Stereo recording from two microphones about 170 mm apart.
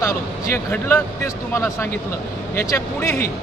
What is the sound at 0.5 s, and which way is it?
Speech, 10° left (ahead or behind).